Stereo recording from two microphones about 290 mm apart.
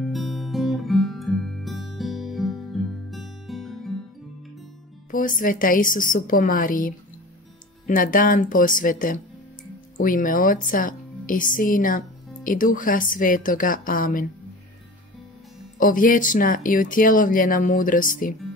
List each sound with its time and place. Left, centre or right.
0.0 s guitar: centre
5.1 s speech: left
15.8 s speech: left